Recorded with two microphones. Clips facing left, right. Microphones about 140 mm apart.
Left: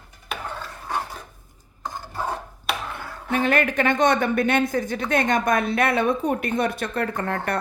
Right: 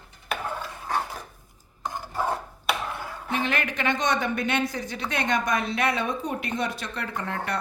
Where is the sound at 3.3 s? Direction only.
50° left (ahead or behind).